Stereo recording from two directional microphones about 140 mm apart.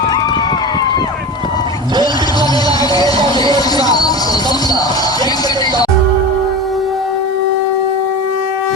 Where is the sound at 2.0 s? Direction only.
30° left (ahead or behind).